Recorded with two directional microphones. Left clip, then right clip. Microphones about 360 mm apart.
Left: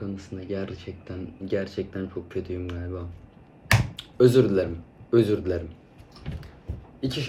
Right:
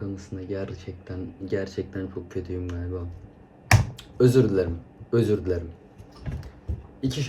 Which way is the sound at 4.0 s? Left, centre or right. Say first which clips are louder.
Left 3 dB; centre.